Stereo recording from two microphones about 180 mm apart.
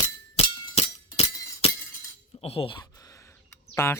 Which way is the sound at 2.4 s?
30° left (ahead or behind).